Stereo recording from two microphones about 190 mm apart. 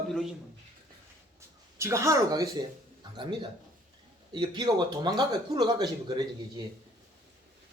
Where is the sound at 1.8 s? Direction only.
15° right (ahead or behind).